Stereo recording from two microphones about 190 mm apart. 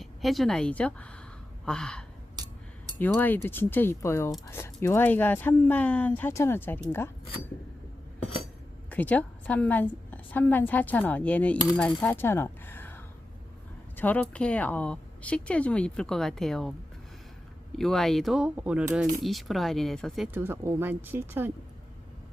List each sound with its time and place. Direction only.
0.0 s a woman's voice: centre (ahead or behind)
1.6 s gasp: 5° left (ahead or behind)
2.3 s a sound: 20° right (ahead or behind)
3.0 s speech: 10° left (ahead or behind)
8.9 s speech: 10° left (ahead or behind)
17.7 s speech: centre (ahead or behind)